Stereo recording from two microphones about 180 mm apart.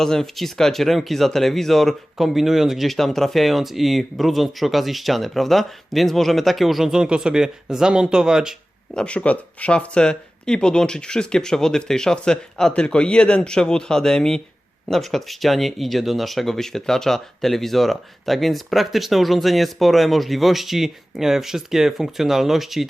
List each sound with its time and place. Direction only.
0.0 s speech: centre (ahead or behind)